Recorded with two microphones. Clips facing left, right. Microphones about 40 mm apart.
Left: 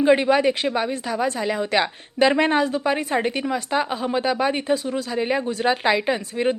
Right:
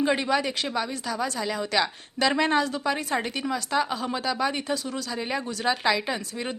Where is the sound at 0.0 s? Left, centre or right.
Left.